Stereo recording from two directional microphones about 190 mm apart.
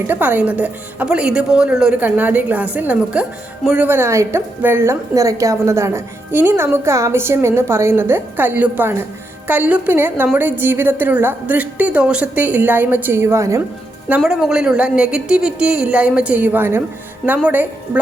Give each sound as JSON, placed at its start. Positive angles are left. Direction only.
{"t": 0.1, "sound": "speech", "side_deg": -10}
{"t": 14.1, "sound": "a woman's voice", "side_deg": -5}